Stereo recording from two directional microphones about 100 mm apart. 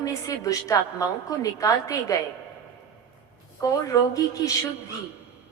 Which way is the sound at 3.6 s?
35° left (ahead or behind).